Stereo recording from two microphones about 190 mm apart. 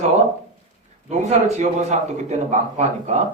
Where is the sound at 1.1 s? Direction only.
40° right (ahead or behind).